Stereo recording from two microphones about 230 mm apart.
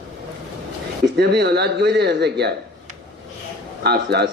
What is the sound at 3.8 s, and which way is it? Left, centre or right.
Speech, right.